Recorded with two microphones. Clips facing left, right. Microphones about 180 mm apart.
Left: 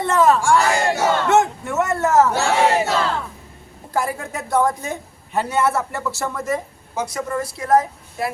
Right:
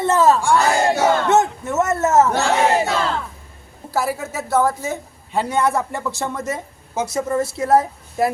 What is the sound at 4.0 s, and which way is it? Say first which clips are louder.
A woman's voice: right 1 dB; 5° right (ahead or behind).